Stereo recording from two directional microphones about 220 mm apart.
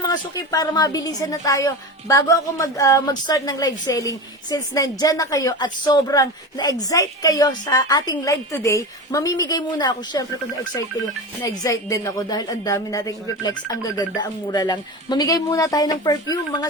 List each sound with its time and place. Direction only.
0.0 s a woman's voice: 15° left (ahead or behind)